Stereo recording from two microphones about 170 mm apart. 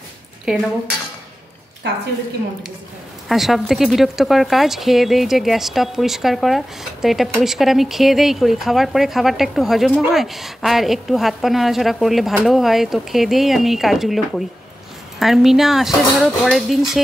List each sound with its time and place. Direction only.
0.5 s speech: 5° right (ahead or behind)
3.3 s speech: centre (ahead or behind)